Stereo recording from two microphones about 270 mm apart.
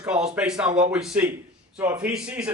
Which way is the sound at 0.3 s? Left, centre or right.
Centre.